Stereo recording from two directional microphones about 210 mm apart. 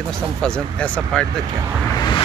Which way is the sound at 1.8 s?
20° left (ahead or behind).